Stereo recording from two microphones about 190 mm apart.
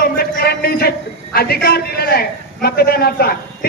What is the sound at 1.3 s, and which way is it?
A man's voice, 55° left (ahead or behind).